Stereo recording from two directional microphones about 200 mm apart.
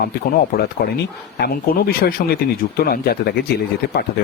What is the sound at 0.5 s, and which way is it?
Speech, 50° left (ahead or behind).